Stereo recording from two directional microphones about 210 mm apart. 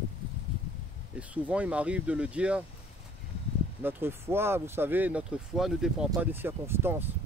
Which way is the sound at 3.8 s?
10° right (ahead or behind).